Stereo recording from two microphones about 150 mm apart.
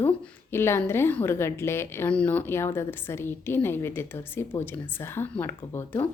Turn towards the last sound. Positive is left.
turn(degrees=15)  # may be behind; listen again after turning